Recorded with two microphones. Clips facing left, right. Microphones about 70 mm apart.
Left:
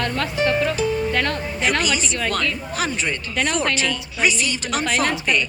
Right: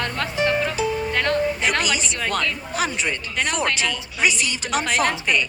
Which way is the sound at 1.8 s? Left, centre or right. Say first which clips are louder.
Left 2 dB; centre.